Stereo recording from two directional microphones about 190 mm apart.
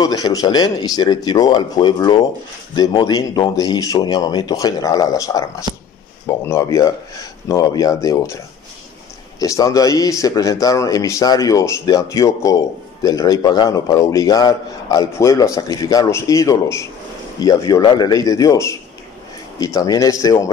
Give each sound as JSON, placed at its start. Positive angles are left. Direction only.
{"t": 0.0, "sound": "speech", "side_deg": 20}
{"t": 9.4, "sound": "speech", "side_deg": 20}